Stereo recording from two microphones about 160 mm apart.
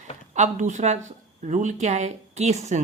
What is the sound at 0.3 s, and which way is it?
A woman's voice, 50° right (ahead or behind).